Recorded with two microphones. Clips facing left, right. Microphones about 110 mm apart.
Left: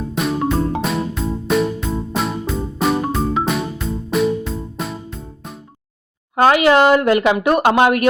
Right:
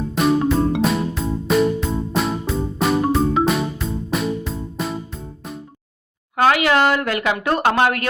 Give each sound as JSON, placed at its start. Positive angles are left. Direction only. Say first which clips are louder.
{"t": 0.2, "sound": "music", "louder": "right 2 dB", "side_deg": 0}
{"t": 6.3, "sound": "speech", "louder": "left 4 dB", "side_deg": 25}